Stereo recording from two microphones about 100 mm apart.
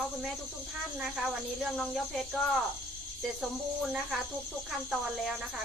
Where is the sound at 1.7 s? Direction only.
Centre (ahead or behind).